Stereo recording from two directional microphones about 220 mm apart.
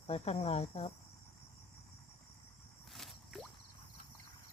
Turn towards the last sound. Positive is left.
turn(degrees=0)  # may be behind; listen again after turning